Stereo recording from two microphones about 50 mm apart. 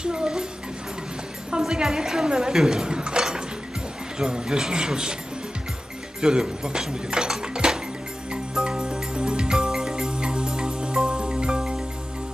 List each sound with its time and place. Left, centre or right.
0.0 s speech: centre
1.6 s speech: centre
6.2 s speech: centre
8.3 s music: centre